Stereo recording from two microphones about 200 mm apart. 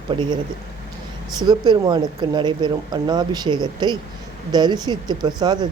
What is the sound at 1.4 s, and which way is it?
Speech, 20° right (ahead or behind).